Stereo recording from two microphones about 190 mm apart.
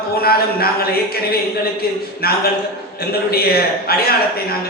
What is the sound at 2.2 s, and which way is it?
A man's voice, 55° left (ahead or behind).